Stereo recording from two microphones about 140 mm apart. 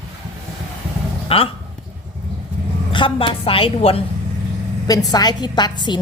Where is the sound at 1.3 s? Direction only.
45° left (ahead or behind).